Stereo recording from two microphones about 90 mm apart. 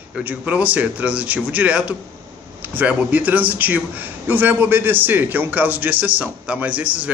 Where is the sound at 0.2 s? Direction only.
15° right (ahead or behind).